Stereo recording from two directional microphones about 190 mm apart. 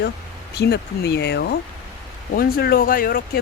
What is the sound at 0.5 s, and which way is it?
Speech, 60° left (ahead or behind).